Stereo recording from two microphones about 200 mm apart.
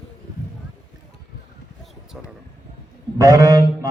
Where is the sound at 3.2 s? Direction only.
15° right (ahead or behind).